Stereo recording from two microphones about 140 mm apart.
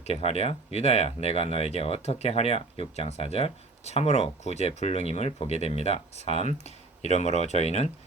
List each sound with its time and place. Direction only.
0.0 s speech: 50° left (ahead or behind)